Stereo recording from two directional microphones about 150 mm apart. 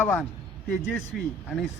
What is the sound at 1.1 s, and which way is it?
Speech, 5° right (ahead or behind).